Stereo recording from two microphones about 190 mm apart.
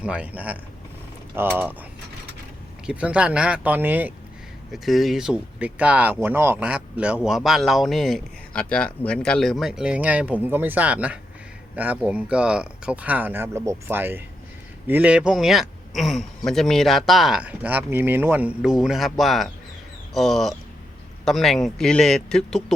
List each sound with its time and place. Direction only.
0.0 s speech: 5° right (ahead or behind)
2.8 s speech: 5° right (ahead or behind)